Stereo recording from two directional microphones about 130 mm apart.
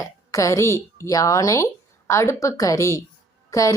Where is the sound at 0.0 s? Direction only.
25° left (ahead or behind).